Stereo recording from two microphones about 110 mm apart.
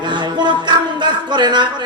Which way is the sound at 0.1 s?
45° right (ahead or behind).